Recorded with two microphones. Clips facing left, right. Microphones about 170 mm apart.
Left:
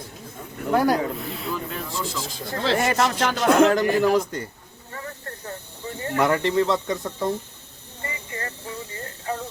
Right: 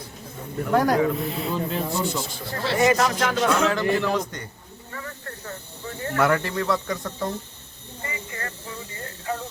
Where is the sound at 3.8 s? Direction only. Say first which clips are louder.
Left 3 dB; 40° left (ahead or behind).